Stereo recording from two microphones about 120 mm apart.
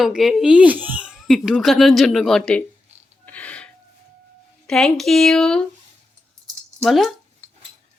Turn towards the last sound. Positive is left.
turn(degrees=0)  # may be behind; listen again after turning